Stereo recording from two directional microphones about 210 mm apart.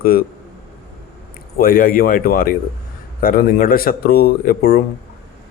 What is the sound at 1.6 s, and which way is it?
Speech, 45° left (ahead or behind).